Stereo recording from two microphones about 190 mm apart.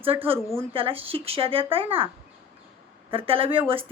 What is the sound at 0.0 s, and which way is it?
Speech, 30° right (ahead or behind).